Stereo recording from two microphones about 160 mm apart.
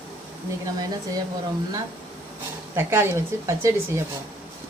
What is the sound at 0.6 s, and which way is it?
Speech, 20° right (ahead or behind).